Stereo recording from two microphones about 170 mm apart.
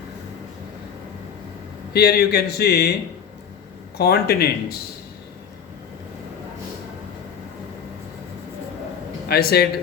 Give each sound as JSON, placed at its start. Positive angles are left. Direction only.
{"t": 1.9, "sound": "speech", "side_deg": 70}
{"t": 3.9, "sound": "speech", "side_deg": 65}
{"t": 9.3, "sound": "a man's voice", "side_deg": 65}